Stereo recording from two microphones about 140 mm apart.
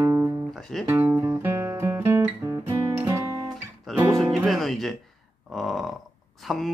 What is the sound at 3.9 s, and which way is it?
Music, centre (ahead or behind).